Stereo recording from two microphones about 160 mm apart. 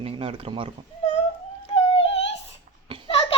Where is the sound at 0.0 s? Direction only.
35° right (ahead or behind).